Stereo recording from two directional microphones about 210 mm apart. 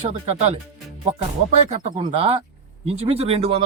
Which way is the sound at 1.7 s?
30° right (ahead or behind).